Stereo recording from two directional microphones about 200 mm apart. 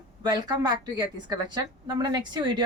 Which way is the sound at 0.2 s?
20° right (ahead or behind).